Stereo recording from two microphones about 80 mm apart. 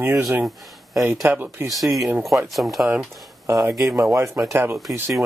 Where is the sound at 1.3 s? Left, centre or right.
Right.